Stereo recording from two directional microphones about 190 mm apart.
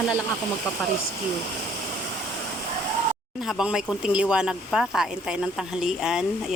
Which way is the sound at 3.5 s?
5° right (ahead or behind).